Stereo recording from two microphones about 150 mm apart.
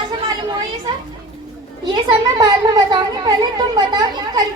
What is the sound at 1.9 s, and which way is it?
Speech, 30° right (ahead or behind).